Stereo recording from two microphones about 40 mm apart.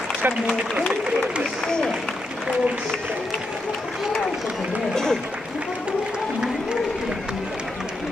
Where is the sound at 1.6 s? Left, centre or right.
Centre.